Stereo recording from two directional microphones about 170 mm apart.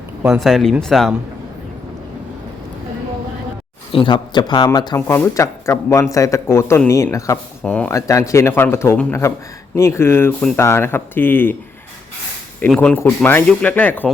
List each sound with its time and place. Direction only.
0.3 s speech: centre (ahead or behind)
3.9 s speech: 25° left (ahead or behind)
4.9 s speech: 15° left (ahead or behind)
7.6 s speech: 5° left (ahead or behind)
7.9 s speech: 20° left (ahead or behind)
12.6 s speech: 5° left (ahead or behind)